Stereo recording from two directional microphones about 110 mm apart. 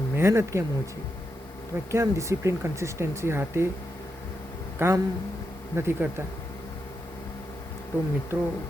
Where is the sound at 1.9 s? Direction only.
25° right (ahead or behind).